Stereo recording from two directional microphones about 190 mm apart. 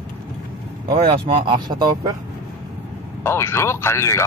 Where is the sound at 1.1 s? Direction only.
25° right (ahead or behind).